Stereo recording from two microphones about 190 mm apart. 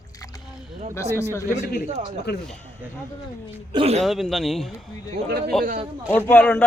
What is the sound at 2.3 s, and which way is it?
Speech, 60° left (ahead or behind).